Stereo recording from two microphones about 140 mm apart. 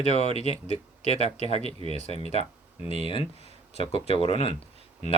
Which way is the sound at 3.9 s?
45° left (ahead or behind).